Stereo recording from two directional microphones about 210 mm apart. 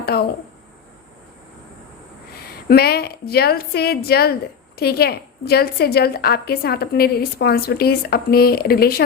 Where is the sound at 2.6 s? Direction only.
50° left (ahead or behind).